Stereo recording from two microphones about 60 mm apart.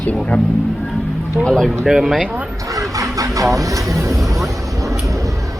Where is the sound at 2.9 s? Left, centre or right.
Right.